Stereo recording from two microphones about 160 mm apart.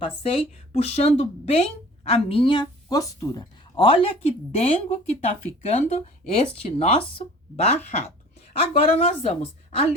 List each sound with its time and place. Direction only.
0.0 s speech: 35° left (ahead or behind)
2.9 s speech: 20° left (ahead or behind)
3.8 s speech: 35° left (ahead or behind)